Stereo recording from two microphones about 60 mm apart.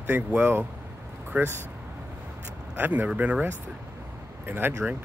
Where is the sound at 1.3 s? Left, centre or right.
Centre.